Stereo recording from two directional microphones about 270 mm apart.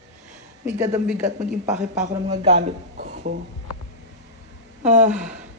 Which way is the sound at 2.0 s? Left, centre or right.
Right.